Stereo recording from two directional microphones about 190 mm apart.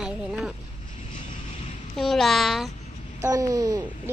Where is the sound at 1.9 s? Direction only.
Centre (ahead or behind).